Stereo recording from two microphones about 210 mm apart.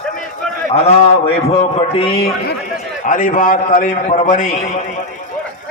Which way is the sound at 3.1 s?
40° left (ahead or behind).